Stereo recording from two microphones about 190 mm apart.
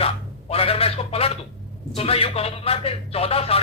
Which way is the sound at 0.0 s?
30° left (ahead or behind).